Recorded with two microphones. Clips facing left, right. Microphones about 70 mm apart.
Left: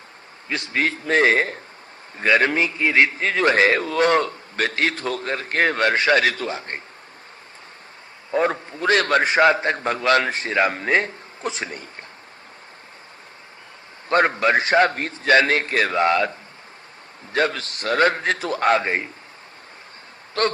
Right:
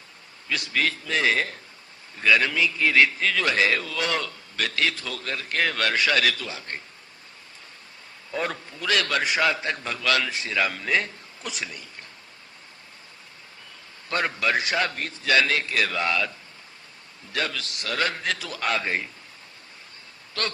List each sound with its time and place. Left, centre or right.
0.4 s a man's voice: left
2.7 s a man's voice: left
8.3 s a man's voice: left
14.1 s a man's voice: left
17.3 s a man's voice: left
20.4 s a man's voice: left